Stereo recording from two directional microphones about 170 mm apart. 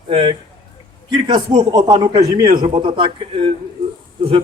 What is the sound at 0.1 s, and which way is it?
Speech, 30° right (ahead or behind).